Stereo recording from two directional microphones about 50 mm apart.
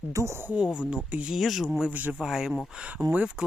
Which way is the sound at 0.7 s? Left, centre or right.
Centre.